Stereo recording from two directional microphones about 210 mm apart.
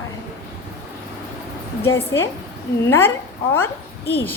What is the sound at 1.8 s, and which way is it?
A woman's voice, 15° left (ahead or behind).